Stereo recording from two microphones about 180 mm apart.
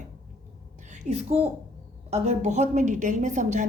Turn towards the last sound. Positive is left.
turn(degrees=-45)  # may be behind; listen again after turning